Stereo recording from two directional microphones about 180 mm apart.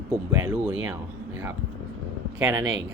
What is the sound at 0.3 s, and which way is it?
Speech, 15° right (ahead or behind).